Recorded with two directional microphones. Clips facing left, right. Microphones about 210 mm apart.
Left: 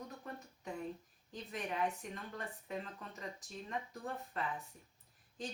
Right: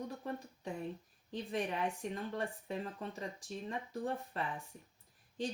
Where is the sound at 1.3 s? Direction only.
30° right (ahead or behind).